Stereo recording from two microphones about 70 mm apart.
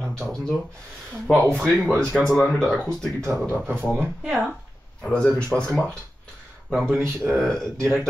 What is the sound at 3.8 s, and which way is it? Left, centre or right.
Speech, centre.